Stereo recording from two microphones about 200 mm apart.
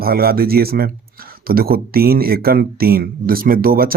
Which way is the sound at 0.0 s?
50° right (ahead or behind).